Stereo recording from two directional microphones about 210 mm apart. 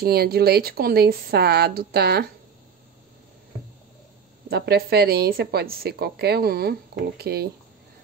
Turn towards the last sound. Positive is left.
turn(degrees=-50)  # may be behind; listen again after turning